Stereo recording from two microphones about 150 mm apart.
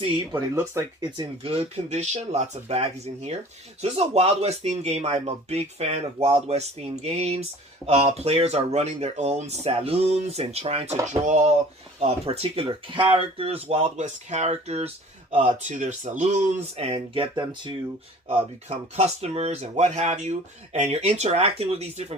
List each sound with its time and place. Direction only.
0.3 s speech: 20° right (ahead or behind)
1.1 s speech: 35° right (ahead or behind)
15.4 s speech: 55° right (ahead or behind); by 17.7 s 30° right (ahead or behind)
18.9 s speech: 45° right (ahead or behind)